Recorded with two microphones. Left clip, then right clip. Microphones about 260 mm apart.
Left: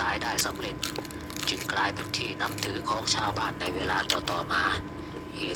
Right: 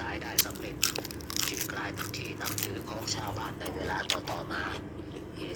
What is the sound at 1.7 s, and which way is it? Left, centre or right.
Speech, left.